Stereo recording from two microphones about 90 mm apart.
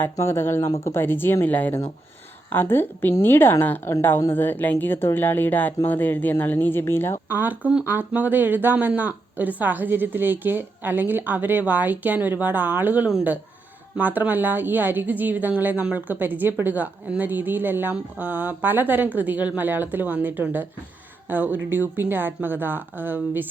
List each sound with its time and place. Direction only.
0.0 s speech: 30° left (ahead or behind)
7.3 s a woman's voice: 20° right (ahead or behind)